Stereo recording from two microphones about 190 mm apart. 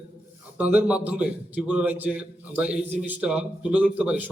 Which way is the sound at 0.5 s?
10° right (ahead or behind).